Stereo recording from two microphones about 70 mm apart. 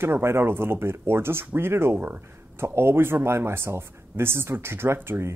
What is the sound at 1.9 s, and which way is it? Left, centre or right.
Speech, right.